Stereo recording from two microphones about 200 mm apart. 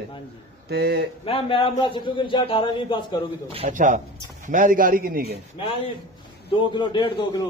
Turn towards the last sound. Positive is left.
turn(degrees=25)  # may be behind; listen again after turning